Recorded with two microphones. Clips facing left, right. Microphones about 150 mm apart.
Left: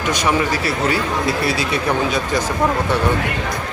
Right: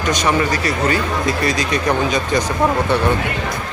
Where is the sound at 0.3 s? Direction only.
5° left (ahead or behind).